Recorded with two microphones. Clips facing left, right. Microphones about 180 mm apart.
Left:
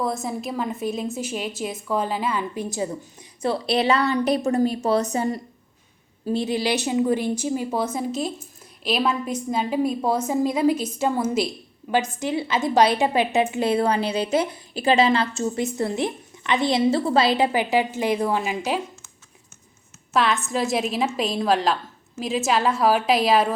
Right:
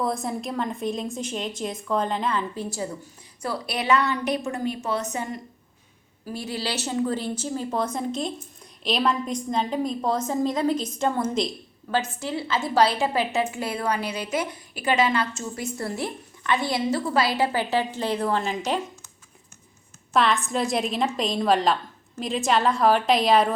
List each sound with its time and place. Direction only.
0.0 s a woman's voice: centre (ahead or behind); by 5.4 s 35° left (ahead or behind)
6.2 s a woman's voice: 20° left (ahead or behind)
20.1 s a woman's voice: centre (ahead or behind)